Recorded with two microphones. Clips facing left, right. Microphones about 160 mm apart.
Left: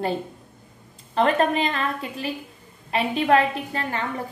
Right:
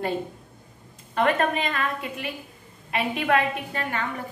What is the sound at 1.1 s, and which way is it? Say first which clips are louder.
A woman's voice: left 3 dB; 30° left (ahead or behind).